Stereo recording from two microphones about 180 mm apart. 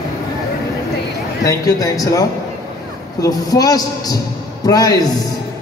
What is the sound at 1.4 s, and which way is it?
Music, 20° left (ahead or behind).